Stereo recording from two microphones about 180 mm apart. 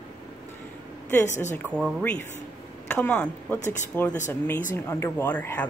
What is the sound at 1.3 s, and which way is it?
Speech, 40° left (ahead or behind).